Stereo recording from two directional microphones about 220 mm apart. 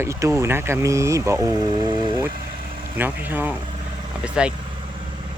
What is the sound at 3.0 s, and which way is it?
Speech, 10° right (ahead or behind).